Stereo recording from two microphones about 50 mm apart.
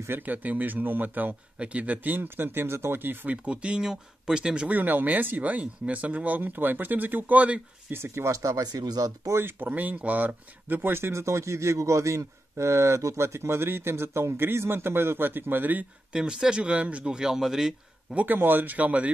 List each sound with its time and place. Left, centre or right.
0.1 s speech: right
2.1 s speech: right
3.4 s speech: centre
4.6 s speech: right
7.9 s speech: right
9.4 s speech: right
9.7 s speech: right
16.1 s speech: centre
18.1 s speech: right